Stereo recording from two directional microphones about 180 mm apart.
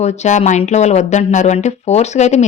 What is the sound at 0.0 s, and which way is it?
Speech, 40° left (ahead or behind).